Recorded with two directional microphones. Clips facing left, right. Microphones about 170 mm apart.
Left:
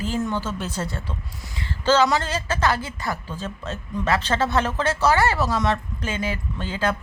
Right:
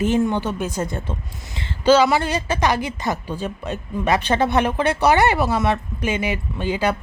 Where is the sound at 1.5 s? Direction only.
20° right (ahead or behind).